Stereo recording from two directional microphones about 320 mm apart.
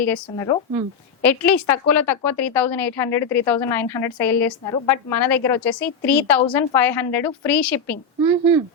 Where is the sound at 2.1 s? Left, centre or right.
Centre.